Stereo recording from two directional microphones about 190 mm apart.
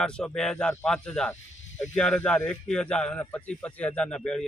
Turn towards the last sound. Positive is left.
turn(degrees=5)  # may be behind; listen again after turning